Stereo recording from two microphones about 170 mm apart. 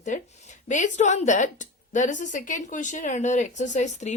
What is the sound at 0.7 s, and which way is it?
A woman's voice, 45° left (ahead or behind).